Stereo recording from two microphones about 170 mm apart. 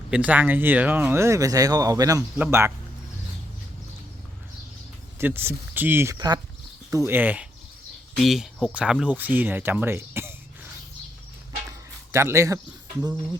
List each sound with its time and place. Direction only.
0.1 s speech: 10° right (ahead or behind)
5.1 s speech: 15° right (ahead or behind)
12.1 s speech: 15° right (ahead or behind)